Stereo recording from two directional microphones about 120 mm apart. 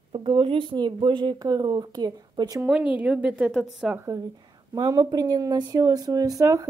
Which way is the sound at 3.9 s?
25° right (ahead or behind).